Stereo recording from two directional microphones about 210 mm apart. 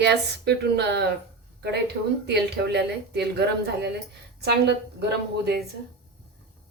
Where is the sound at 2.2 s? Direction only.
50° right (ahead or behind).